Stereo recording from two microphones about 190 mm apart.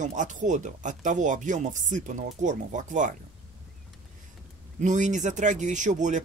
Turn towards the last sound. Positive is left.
turn(degrees=-40)  # may be behind; listen again after turning